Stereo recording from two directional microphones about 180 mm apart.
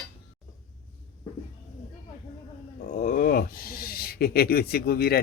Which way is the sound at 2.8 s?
50° left (ahead or behind).